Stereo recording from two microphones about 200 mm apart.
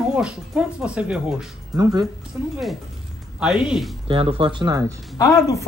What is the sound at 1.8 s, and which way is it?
Speech, 20° right (ahead or behind).